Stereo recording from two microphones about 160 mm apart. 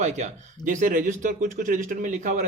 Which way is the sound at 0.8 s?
60° right (ahead or behind).